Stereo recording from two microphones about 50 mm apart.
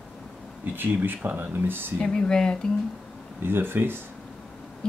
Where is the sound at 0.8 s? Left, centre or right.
Right.